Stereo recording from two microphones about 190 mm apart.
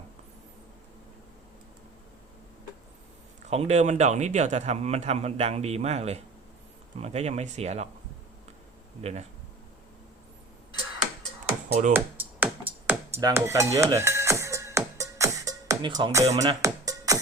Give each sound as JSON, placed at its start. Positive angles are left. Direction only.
{"t": 3.4, "sound": "speech", "side_deg": -35}
{"t": 11.7, "sound": "speech", "side_deg": -40}
{"t": 11.9, "sound": "music", "side_deg": -10}
{"t": 16.0, "sound": "speech", "side_deg": -20}
{"t": 16.4, "sound": "music", "side_deg": -20}